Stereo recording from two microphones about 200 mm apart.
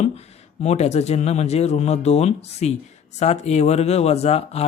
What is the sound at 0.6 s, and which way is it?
Speech, 35° left (ahead or behind).